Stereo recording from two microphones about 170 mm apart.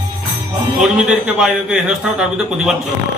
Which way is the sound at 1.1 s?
5° right (ahead or behind).